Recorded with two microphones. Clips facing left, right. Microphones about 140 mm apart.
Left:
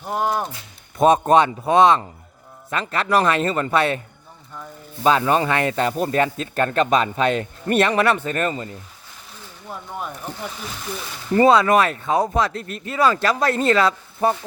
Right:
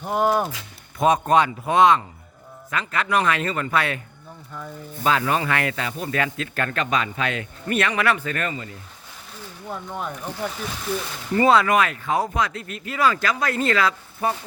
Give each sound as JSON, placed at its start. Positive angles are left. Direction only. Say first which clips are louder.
{"t": 0.0, "sound": "speech", "louder": "right 2 dB", "side_deg": 0}
{"t": 0.9, "sound": "speech", "louder": "left 3 dB", "side_deg": 25}
{"t": 5.0, "sound": "speech", "louder": "left 4 dB", "side_deg": 30}
{"t": 11.3, "sound": "speech", "louder": "left 3 dB", "side_deg": 30}
{"t": 12.3, "sound": "speech", "louder": "left 3 dB", "side_deg": 40}